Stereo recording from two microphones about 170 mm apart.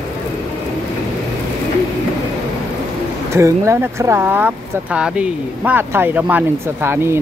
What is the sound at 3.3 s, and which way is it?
Speech, 15° right (ahead or behind).